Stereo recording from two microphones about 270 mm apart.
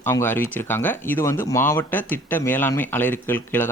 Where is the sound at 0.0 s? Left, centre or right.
Centre.